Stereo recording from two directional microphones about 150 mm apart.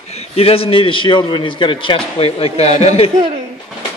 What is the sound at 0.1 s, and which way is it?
A man's voice, 45° left (ahead or behind).